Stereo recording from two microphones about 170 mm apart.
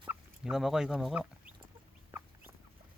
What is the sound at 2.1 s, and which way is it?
Fowl, 10° right (ahead or behind).